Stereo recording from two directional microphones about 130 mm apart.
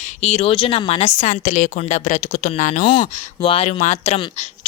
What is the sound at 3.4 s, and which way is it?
Speech, 45° left (ahead or behind).